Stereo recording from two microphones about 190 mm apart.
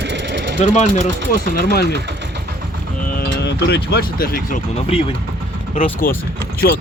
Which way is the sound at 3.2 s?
60° left (ahead or behind).